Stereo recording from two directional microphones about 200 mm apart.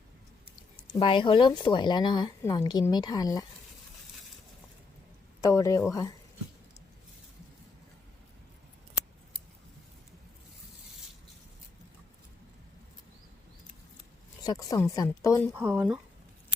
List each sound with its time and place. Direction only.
0.9 s speech: 25° left (ahead or behind)
5.4 s a woman's voice: 15° left (ahead or behind)
14.4 s a woman's voice: 20° left (ahead or behind)
15.5 s speech: 10° right (ahead or behind)